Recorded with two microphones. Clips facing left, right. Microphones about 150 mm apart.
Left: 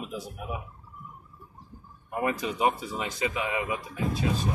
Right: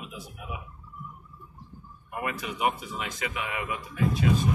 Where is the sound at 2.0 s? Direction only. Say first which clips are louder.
Left 4 dB; 30° left (ahead or behind).